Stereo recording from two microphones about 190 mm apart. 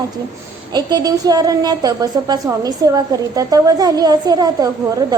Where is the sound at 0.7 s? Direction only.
20° right (ahead or behind).